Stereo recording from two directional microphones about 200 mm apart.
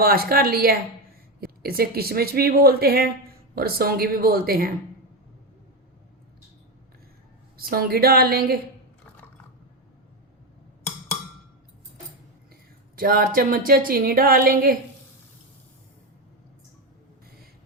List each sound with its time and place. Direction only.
0.0 s speech: 50° right (ahead or behind)
7.5 s speech: 45° right (ahead or behind)
13.0 s speech: 45° right (ahead or behind)